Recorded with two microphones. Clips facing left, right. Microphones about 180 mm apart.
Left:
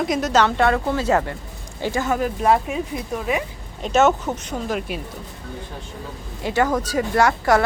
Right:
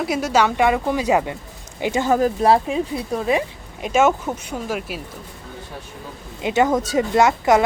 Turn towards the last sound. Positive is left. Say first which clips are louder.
# right 2 dB
turn(degrees=-20)  # may be behind; listen again after turning